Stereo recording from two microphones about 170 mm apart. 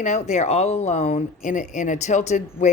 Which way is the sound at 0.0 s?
45° left (ahead or behind).